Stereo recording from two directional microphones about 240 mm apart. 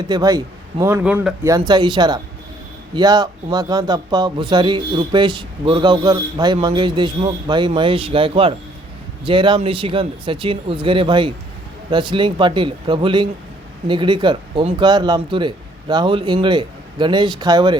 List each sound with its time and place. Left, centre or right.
0.1 s speech: centre